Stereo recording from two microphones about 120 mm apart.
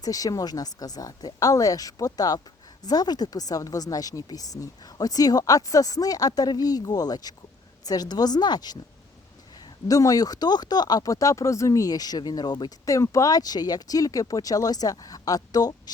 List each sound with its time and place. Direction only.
0.0 s speech: 30° left (ahead or behind)
9.9 s speech: 30° left (ahead or behind)